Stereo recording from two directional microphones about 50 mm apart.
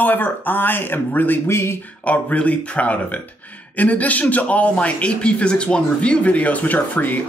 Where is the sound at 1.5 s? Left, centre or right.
Left.